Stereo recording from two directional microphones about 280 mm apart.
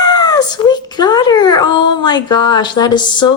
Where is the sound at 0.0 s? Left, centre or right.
Centre.